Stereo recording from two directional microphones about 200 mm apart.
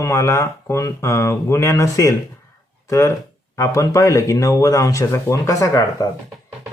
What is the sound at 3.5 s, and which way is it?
Speech, 15° left (ahead or behind).